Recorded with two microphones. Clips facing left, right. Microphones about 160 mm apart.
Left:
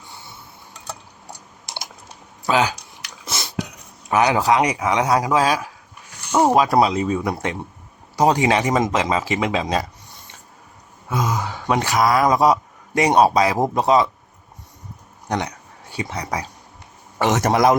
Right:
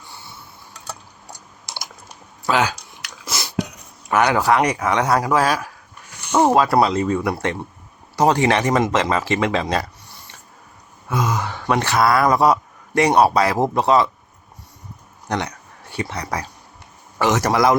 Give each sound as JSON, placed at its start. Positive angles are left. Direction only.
{"t": 2.5, "sound": "a man's voice", "side_deg": 20}
{"t": 3.2, "sound": "a sound", "side_deg": 25}
{"t": 4.1, "sound": "speech", "side_deg": 15}
{"t": 11.1, "sound": "a man's voice", "side_deg": 15}
{"t": 15.3, "sound": "a man's voice", "side_deg": 15}